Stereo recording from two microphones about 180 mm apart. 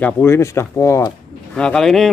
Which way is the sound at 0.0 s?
15° left (ahead or behind).